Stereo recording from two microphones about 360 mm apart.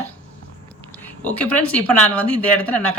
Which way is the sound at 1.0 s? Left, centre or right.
Centre.